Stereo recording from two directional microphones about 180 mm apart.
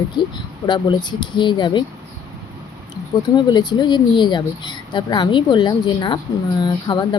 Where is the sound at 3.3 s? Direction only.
25° left (ahead or behind).